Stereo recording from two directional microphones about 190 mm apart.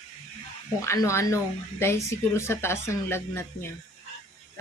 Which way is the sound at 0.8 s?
15° left (ahead or behind).